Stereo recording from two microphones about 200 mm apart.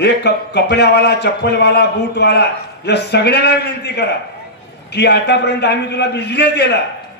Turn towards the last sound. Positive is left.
turn(degrees=55)  # may be behind; listen again after turning